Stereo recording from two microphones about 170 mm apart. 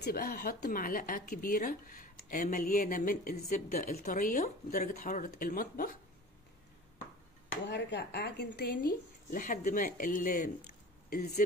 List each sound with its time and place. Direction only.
0.0 s a woman's voice: 60° left (ahead or behind)
7.6 s a woman's voice: 90° left; by 11.4 s 60° left (ahead or behind)